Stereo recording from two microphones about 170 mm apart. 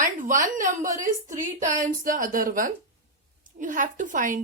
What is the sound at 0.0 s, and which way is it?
A woman's voice, 50° right (ahead or behind).